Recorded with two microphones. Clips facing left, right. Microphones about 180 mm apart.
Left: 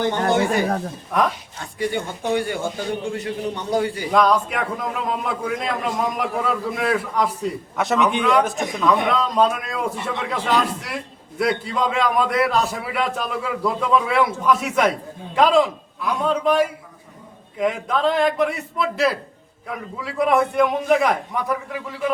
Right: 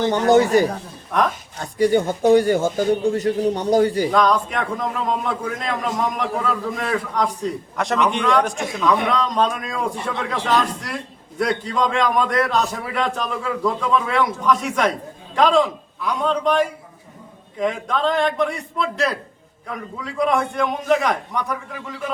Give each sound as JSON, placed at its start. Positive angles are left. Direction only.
{"t": 0.1, "sound": "speech", "side_deg": -40}
{"t": 4.1, "sound": "a man's voice", "side_deg": 5}